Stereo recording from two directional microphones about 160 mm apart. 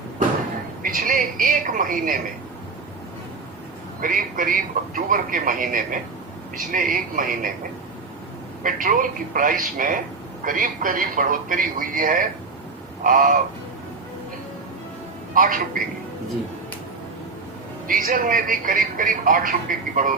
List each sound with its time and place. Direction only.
0.8 s a woman's voice: 60° right (ahead or behind)
4.0 s a man's voice: 60° right (ahead or behind)
8.6 s a man's voice: 60° right (ahead or behind)
13.0 s crow: 55° right (ahead or behind)
15.4 s a man's voice: 55° right (ahead or behind)
17.8 s a man's voice: 60° right (ahead or behind)